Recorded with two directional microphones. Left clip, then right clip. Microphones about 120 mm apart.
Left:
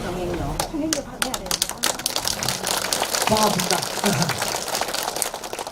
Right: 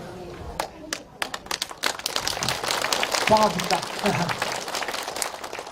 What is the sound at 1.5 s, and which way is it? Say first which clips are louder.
Crumpling: left 1 dB; 10° left (ahead or behind).